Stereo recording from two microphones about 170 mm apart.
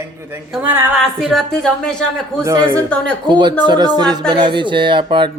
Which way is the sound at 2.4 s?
15° right (ahead or behind).